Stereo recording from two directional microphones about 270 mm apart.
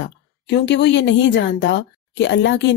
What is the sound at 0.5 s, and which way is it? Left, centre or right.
Speech, left.